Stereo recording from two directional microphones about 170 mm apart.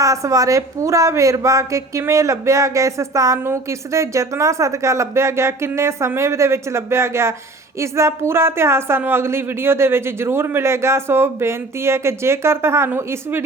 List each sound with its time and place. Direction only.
0.0 s a woman's voice: 20° right (ahead or behind)